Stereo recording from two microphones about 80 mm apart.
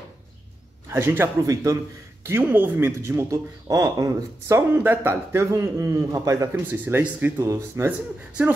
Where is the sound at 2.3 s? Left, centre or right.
Right.